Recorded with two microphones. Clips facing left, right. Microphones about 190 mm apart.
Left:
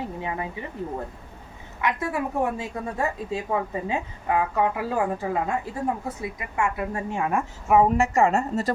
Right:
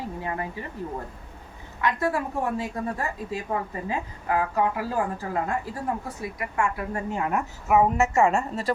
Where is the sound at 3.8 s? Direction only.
20° left (ahead or behind).